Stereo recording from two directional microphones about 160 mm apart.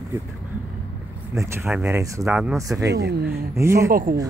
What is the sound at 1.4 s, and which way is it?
Speech, 15° right (ahead or behind).